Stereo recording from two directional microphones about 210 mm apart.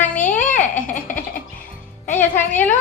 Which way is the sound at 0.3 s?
35° left (ahead or behind).